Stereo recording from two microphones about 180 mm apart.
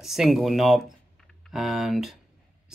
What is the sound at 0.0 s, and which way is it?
Speech, centre (ahead or behind).